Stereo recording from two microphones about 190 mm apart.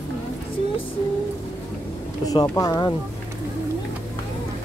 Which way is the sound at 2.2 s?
20° left (ahead or behind).